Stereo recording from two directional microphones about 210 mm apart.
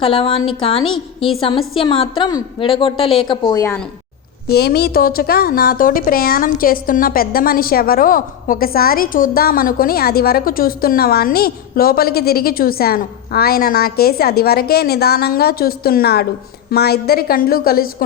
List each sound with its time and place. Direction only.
0.0 s a woman's voice: 25° left (ahead or behind)
4.5 s a woman's voice: 50° left (ahead or behind)